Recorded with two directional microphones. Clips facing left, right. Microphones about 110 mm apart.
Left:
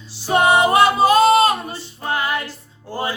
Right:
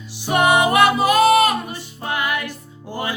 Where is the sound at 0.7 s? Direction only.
25° left (ahead or behind).